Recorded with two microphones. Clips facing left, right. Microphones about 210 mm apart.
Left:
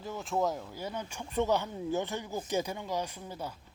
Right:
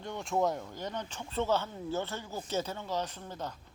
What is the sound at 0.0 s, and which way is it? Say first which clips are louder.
Speech: right 1 dB; centre (ahead or behind).